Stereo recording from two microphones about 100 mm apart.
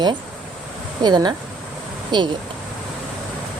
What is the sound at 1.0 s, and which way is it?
Speech, 45° right (ahead or behind).